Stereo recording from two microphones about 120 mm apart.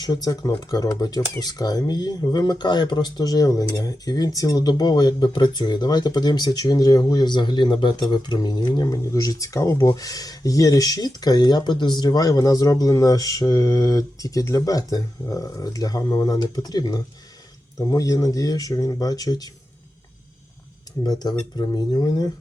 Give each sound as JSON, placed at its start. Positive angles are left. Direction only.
{"t": 0.0, "sound": "speech", "side_deg": 35}
{"t": 21.0, "sound": "speech", "side_deg": 35}